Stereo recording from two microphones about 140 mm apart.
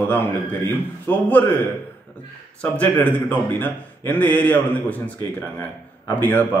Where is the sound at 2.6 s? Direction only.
10° left (ahead or behind).